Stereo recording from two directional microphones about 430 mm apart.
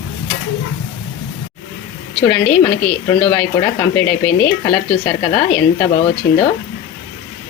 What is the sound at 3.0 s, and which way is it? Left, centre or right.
Speech, centre.